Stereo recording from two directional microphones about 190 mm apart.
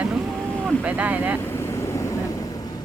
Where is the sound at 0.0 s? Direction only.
5° right (ahead or behind).